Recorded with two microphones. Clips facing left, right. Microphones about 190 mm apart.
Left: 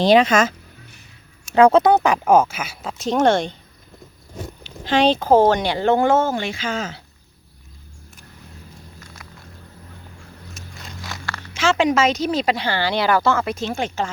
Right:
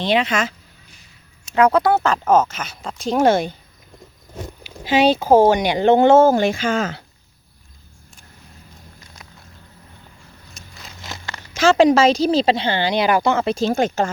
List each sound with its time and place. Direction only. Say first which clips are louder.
0.0 s speech: left 5 dB; 40° left (ahead or behind)
1.5 s speech: left 3 dB; 25° left (ahead or behind); by 3.5 s 5° right (ahead or behind)
4.6 s speech: right 1 dB; 10° right (ahead or behind); by 6.2 s 25° right (ahead or behind)
6.2 s speech: right 8 dB; 40° right (ahead or behind)
11.0 s a sound: left 1 dB; 20° right (ahead or behind)
11.5 s speech: right 5 dB; 40° right (ahead or behind); by 13.4 s 15° right (ahead or behind)
13.4 s speech: right 6 dB; 30° right (ahead or behind)